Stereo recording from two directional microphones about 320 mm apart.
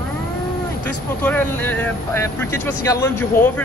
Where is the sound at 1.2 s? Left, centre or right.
Centre.